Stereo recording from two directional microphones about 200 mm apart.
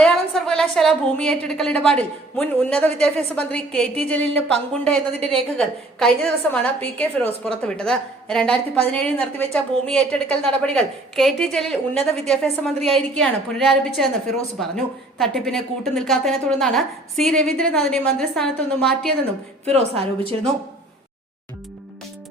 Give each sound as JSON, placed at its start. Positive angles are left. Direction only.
{"t": 0.0, "sound": "a woman's voice", "side_deg": 5}
{"t": 19.6, "sound": "a woman's voice", "side_deg": -30}